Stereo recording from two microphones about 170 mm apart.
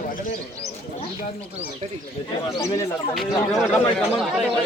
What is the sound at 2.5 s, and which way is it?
Speech, 20° left (ahead or behind).